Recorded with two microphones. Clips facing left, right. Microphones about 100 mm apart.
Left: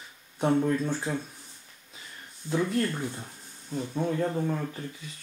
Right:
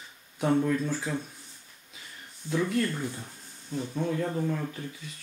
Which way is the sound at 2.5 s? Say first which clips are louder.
Even; 30° left (ahead or behind).